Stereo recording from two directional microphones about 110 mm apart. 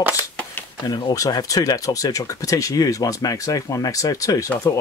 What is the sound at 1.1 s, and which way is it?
Speech, 30° left (ahead or behind).